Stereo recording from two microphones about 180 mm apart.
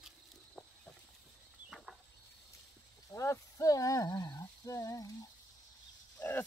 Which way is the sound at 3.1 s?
15° left (ahead or behind).